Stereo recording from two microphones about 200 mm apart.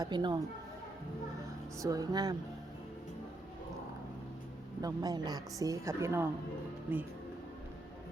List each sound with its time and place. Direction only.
0.0 s a woman's voice: 20° right (ahead or behind)
1.8 s a woman's voice: 15° right (ahead or behind)
4.8 s a woman's voice: 20° right (ahead or behind)